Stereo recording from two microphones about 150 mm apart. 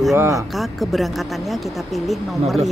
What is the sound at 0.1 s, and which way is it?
Speech, 20° right (ahead or behind).